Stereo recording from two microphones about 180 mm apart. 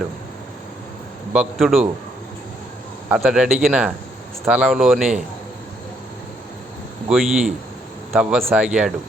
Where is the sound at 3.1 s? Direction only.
5° right (ahead or behind).